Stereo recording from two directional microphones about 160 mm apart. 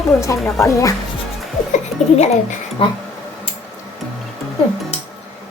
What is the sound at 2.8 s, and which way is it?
Speech, 35° left (ahead or behind).